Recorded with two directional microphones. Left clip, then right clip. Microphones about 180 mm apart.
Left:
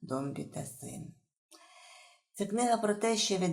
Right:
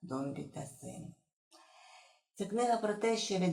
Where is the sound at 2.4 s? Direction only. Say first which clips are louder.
Left 2 dB; 35° left (ahead or behind).